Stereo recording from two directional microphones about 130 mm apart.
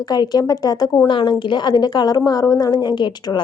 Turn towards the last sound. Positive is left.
turn(degrees=35)  # may be behind; listen again after turning